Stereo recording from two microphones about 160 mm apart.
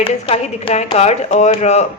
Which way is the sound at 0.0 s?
35° left (ahead or behind).